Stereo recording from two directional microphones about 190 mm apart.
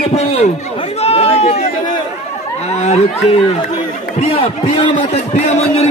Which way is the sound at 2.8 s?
35° left (ahead or behind).